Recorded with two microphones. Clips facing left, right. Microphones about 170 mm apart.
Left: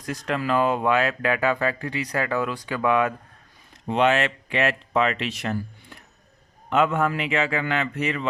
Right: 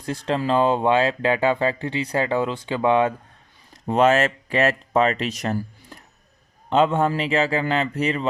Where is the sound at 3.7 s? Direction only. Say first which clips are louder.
Right 3 dB; 40° right (ahead or behind).